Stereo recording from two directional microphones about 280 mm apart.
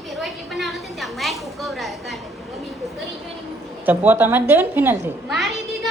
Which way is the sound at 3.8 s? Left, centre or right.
Centre.